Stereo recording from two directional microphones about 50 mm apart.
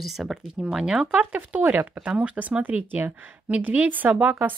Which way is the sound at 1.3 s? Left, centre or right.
Right.